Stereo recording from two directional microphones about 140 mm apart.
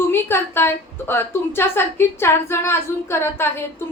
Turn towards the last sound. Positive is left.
turn(degrees=15)  # may be behind; listen again after turning